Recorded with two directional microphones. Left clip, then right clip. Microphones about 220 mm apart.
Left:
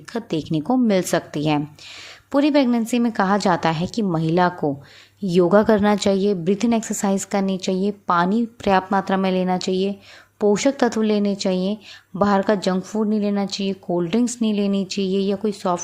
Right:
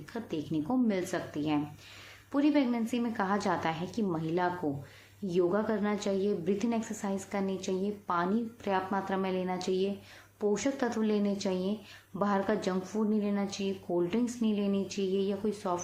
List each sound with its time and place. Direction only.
0.1 s a woman's voice: 45° left (ahead or behind)